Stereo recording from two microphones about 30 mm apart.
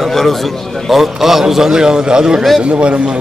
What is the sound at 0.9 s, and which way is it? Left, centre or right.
A man's voice, centre.